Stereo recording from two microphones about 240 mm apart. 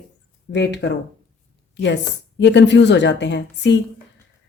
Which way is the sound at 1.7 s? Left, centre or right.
Left.